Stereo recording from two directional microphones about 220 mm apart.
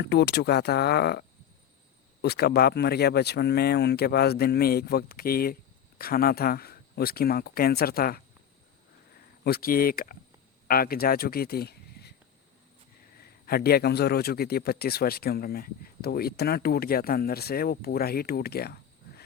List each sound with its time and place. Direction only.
0.0 s a man's voice: 50° left (ahead or behind)
2.2 s a man's voice: 45° left (ahead or behind)
9.4 s speech: 45° left (ahead or behind)
13.1 s a man's voice: 45° left (ahead or behind)